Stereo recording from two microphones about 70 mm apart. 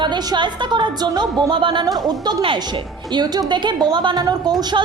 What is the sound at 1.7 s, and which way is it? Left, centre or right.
A woman's voice, right.